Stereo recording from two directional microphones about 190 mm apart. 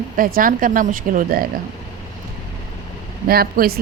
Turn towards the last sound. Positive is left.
turn(degrees=-50)  # may be behind; listen again after turning